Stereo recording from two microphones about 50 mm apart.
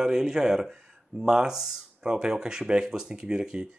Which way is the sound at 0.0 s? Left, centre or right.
Centre.